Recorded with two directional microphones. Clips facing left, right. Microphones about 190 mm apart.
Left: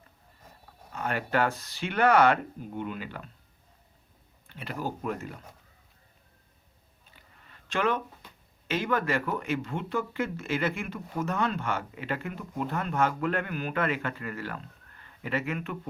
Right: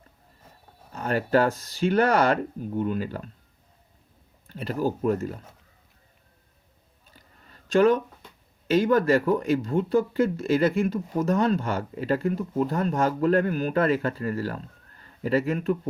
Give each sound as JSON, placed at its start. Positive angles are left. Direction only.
{"t": 0.9, "sound": "speech", "side_deg": -40}
{"t": 4.4, "sound": "speech", "side_deg": -40}
{"t": 7.1, "sound": "a sound", "side_deg": -40}
{"t": 8.6, "sound": "speech", "side_deg": -40}